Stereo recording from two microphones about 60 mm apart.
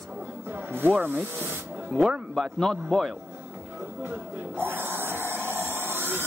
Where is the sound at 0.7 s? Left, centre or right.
Right.